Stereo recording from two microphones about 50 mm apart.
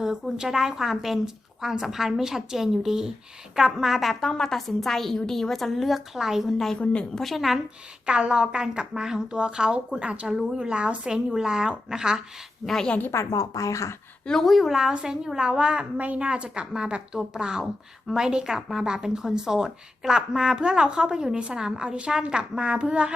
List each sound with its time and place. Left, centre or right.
0.0 s a woman's voice: centre
6.7 s a woman's voice: left
7.2 s a woman's voice: centre
8.0 s a woman's voice: centre
12.6 s speech: centre
13.1 s speech: left
14.3 s a woman's voice: centre
14.9 s a woman's voice: centre